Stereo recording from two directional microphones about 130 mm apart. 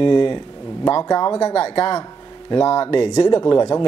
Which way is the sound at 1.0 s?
30° left (ahead or behind).